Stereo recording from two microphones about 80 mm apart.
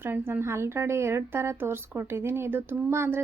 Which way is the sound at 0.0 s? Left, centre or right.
Right.